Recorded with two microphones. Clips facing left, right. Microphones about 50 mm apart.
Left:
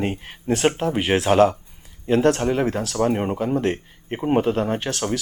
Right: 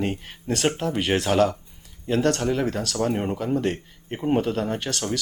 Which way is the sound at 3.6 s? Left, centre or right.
Centre.